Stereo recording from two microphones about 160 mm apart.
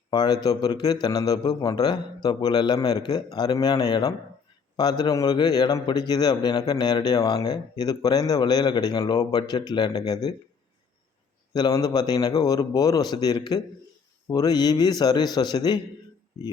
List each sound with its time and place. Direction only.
0.1 s a man's voice: 25° left (ahead or behind)
11.5 s a man's voice: 25° left (ahead or behind)